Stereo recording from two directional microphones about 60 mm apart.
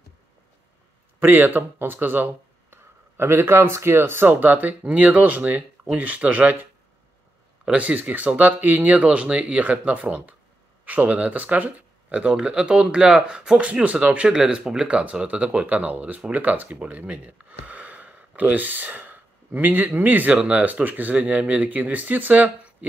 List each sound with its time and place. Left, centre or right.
1.2 s speech: right
7.7 s speech: right
20.3 s speech: centre
20.6 s speech: right